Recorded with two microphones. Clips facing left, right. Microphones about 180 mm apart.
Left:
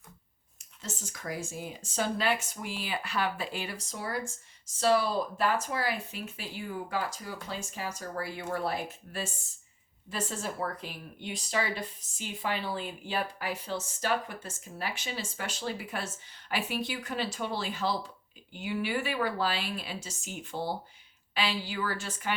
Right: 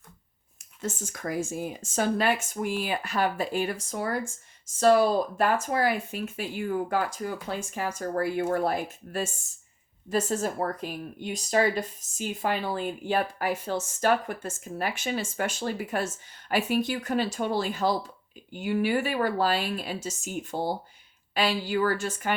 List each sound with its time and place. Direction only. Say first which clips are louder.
0.8 s speech: right 8 dB; 50° right (ahead or behind)